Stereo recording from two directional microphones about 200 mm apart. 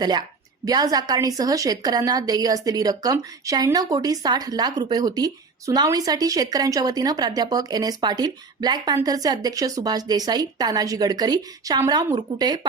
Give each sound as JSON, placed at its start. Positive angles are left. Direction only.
{"t": 0.0, "sound": "a woman's voice", "side_deg": -20}